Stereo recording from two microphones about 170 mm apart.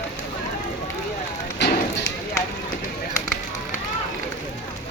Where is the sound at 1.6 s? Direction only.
90° left.